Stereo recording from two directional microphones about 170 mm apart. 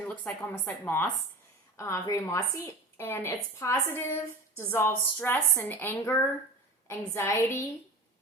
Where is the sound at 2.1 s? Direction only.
15° left (ahead or behind).